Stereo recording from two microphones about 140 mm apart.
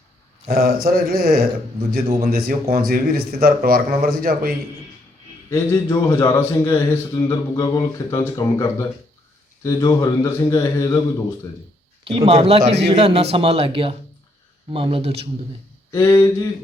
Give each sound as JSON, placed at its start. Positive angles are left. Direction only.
{"t": 0.5, "sound": "speech", "side_deg": -90}
{"t": 5.5, "sound": "a man's voice", "side_deg": 25}
{"t": 12.0, "sound": "a man's voice", "side_deg": -40}
{"t": 15.9, "sound": "a man's voice", "side_deg": 20}